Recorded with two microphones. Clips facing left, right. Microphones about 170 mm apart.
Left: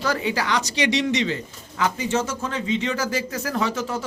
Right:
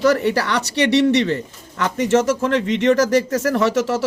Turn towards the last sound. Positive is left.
turn(degrees=-90)